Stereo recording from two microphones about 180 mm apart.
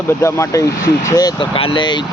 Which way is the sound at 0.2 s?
15° left (ahead or behind).